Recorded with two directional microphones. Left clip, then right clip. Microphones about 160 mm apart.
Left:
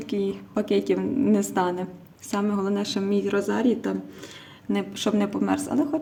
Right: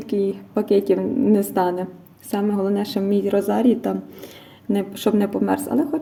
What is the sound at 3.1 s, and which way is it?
Speech, centre (ahead or behind).